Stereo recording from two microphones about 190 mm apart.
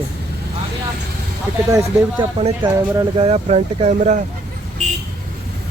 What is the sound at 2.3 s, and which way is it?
Speech, 30° right (ahead or behind).